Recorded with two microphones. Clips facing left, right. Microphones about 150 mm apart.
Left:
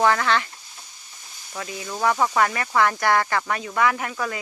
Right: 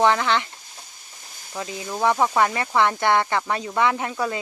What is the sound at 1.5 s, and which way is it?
Speech, 25° right (ahead or behind).